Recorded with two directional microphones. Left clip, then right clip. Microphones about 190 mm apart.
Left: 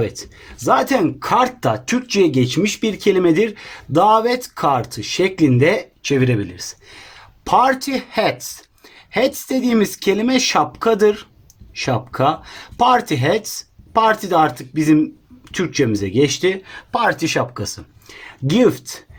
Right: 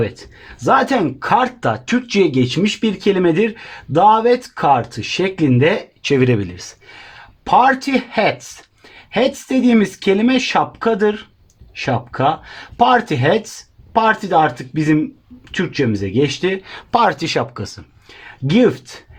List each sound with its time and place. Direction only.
0.6 s speech: 30° right (ahead or behind)
6.0 s speech: 50° right (ahead or behind)
7.4 s speech: 25° right (ahead or behind)
16.6 s speech: 45° right (ahead or behind); by 18.9 s 25° right (ahead or behind)